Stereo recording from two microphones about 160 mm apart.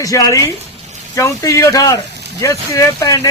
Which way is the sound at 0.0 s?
20° left (ahead or behind).